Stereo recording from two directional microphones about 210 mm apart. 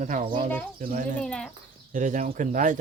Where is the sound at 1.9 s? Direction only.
35° right (ahead or behind).